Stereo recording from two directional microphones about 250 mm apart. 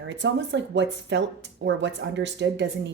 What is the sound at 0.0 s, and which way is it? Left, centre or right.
Speech, right.